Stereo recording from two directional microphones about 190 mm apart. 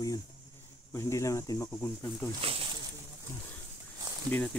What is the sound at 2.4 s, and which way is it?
Speech, 30° right (ahead or behind).